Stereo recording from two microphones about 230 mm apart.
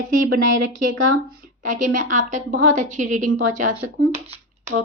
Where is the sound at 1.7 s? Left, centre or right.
Right.